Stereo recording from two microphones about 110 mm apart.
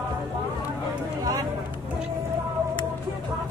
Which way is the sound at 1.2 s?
30° right (ahead or behind).